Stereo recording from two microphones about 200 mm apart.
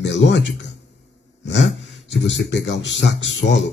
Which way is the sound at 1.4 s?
65° left (ahead or behind).